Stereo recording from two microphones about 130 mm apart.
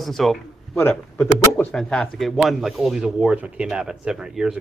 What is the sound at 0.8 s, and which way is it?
Speech, 15° left (ahead or behind).